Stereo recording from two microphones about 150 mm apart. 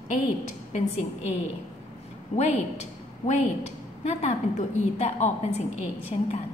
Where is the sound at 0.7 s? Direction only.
50° left (ahead or behind).